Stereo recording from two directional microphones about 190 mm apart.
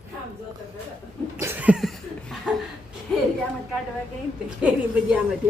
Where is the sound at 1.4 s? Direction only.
10° right (ahead or behind).